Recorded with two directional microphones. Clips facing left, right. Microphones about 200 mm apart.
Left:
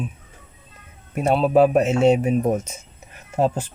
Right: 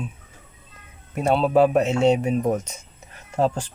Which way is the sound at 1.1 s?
15° left (ahead or behind).